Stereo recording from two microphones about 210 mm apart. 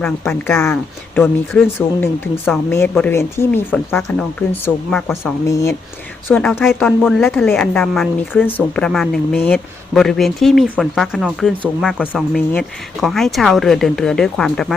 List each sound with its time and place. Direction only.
0.0 s a woman's voice: 5° left (ahead or behind)